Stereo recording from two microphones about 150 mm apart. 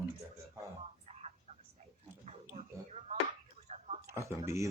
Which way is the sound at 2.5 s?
45° right (ahead or behind).